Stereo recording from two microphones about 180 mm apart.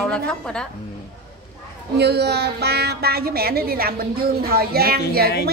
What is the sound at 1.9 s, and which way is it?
A woman's voice, 65° right (ahead or behind).